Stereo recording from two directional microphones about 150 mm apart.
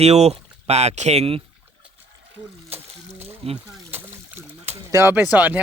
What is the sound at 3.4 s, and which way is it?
Speech, 40° right (ahead or behind).